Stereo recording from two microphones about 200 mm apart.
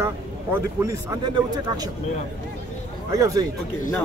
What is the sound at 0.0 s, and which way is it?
Speech, 15° right (ahead or behind).